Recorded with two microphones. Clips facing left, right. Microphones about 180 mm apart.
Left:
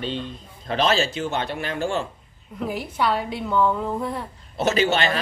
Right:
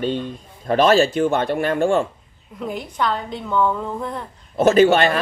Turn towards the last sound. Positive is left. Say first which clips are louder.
# right 7 dB
turn(degrees=-50)  # may be behind; listen again after turning